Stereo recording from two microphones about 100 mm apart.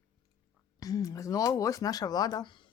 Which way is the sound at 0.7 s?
35° left (ahead or behind).